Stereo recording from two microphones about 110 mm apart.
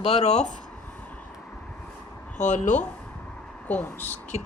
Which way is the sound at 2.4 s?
90° left.